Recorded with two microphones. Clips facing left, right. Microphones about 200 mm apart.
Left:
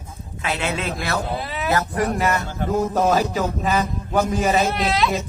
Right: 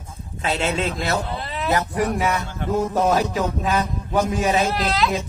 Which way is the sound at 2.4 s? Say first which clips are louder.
Left 3 dB; 45° left (ahead or behind).